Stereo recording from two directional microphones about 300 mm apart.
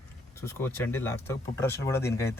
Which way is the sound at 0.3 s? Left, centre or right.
Centre.